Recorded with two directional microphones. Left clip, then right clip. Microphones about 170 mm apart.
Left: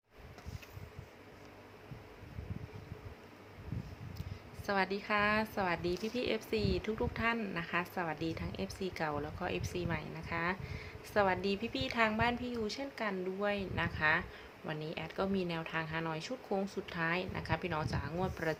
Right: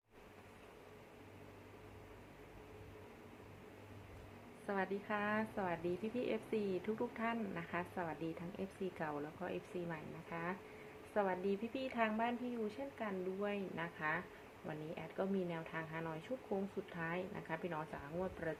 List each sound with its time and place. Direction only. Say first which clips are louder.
4.6 s a woman's voice: left 7 dB; 30° left (ahead or behind)